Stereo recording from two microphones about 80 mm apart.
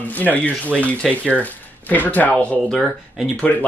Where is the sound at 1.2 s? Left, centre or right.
Centre.